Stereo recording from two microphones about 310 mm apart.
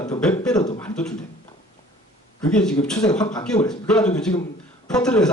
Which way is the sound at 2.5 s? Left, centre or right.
Centre.